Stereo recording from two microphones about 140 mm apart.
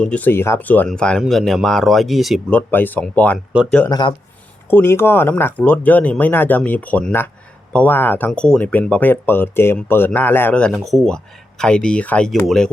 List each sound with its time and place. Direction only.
0.0 s speech: 10° left (ahead or behind)
2.5 s speech: 10° left (ahead or behind)
3.3 s speech: 5° right (ahead or behind)
3.8 s speech: 30° left (ahead or behind)
4.7 s speech: 15° left (ahead or behind)